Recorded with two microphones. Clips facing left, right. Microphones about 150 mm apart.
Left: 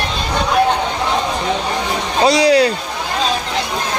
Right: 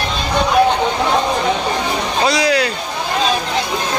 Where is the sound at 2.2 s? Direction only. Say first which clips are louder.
Left 5 dB; 35° left (ahead or behind).